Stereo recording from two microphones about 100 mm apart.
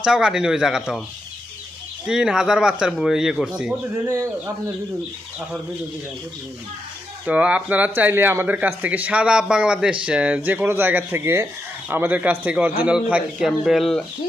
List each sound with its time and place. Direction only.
0.0 s speech: 10° right (ahead or behind)
2.0 s speech: 10° right (ahead or behind)
4.0 s speech: 25° right (ahead or behind)
7.3 s speech: 15° right (ahead or behind)
13.7 s speech: centre (ahead or behind)